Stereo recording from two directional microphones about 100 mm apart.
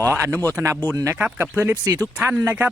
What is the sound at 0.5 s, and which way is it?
Speech, 25° right (ahead or behind).